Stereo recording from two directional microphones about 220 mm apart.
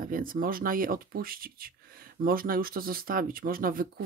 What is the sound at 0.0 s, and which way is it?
Speech, 40° right (ahead or behind).